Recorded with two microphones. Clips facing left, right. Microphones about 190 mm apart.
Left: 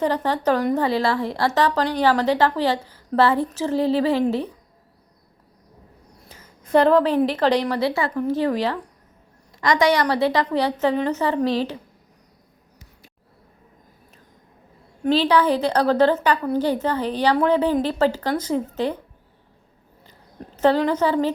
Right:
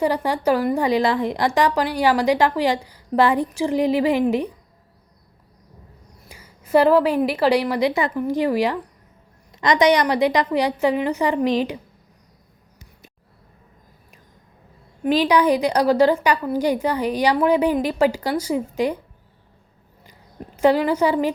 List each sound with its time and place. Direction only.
0.0 s speech: 10° right (ahead or behind)
6.2 s a sound: 10° right (ahead or behind)
7.3 s speech: 10° right (ahead or behind)
15.0 s speech: 15° right (ahead or behind)
20.6 s speech: 10° right (ahead or behind)